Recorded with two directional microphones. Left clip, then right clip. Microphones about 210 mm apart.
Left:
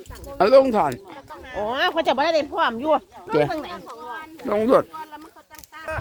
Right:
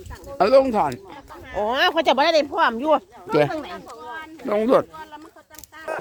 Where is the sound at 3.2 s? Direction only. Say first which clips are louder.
Right 2 dB; 15° right (ahead or behind).